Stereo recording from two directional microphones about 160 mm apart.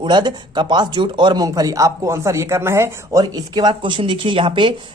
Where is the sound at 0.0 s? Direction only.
30° right (ahead or behind).